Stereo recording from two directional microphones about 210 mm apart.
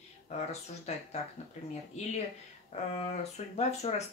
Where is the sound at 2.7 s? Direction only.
30° left (ahead or behind).